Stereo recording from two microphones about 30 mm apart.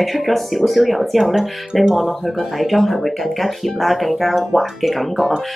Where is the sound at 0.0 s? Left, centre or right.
Centre.